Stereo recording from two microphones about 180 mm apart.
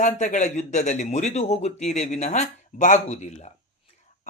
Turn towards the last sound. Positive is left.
turn(degrees=40)  # may be behind; listen again after turning